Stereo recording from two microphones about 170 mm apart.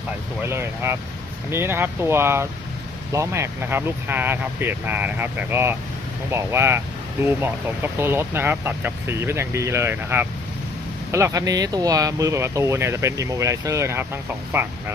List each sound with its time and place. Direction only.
0.5 s speech: 15° right (ahead or behind)